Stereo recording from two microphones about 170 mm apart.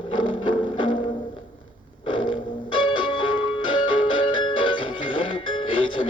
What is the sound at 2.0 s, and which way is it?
Music, 30° left (ahead or behind).